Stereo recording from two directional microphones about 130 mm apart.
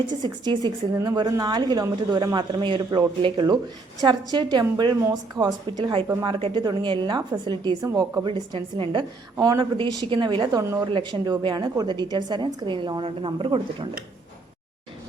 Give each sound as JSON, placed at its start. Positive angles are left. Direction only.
{"t": 0.2, "sound": "speech", "side_deg": -35}